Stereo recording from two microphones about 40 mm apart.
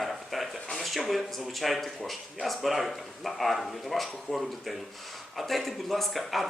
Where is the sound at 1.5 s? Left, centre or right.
Centre.